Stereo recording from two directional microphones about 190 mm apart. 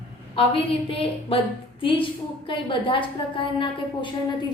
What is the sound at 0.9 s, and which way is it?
A woman's voice, 30° left (ahead or behind).